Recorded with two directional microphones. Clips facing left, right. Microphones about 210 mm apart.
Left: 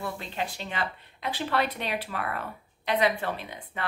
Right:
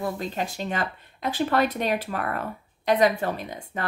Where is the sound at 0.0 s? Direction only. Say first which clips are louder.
Right 5 dB; 40° right (ahead or behind).